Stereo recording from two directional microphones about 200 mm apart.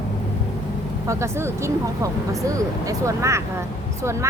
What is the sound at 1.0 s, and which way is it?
Speech, 15° right (ahead or behind).